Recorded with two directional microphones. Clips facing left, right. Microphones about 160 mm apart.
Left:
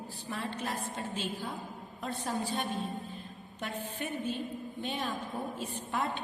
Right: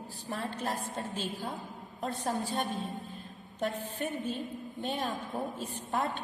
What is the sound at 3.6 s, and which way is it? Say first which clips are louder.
A woman's voice: right 4 dB; 40° right (ahead or behind).